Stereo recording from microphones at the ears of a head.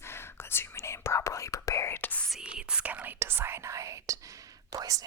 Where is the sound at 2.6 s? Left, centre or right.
Right.